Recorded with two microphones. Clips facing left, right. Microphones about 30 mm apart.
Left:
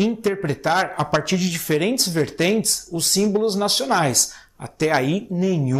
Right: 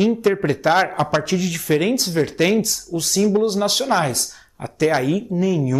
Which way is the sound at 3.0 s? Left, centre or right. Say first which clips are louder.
Right 1 dB; left.